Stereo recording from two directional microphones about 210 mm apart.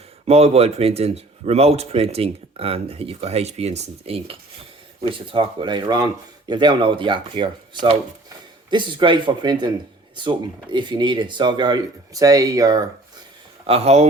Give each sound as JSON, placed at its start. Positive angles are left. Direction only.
{"t": 0.3, "sound": "speech", "side_deg": -30}
{"t": 13.7, "sound": "speech", "side_deg": -30}